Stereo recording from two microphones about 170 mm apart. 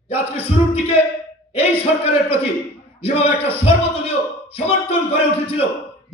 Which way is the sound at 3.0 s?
35° left (ahead or behind).